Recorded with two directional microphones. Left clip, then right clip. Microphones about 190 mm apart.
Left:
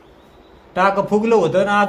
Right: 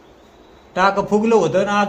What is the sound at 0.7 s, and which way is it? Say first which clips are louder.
Speech: even; 5° left (ahead or behind).